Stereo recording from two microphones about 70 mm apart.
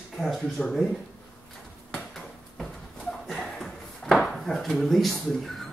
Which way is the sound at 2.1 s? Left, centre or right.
Centre.